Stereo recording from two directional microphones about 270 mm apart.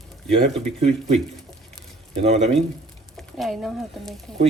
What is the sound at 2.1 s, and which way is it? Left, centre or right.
Speech, right.